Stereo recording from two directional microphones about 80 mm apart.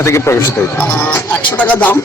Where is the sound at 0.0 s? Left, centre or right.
Left.